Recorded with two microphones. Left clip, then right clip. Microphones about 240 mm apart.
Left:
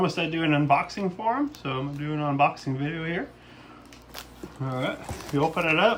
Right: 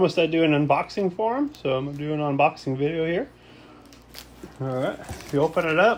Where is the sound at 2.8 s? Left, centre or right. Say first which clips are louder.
Right 8 dB; centre.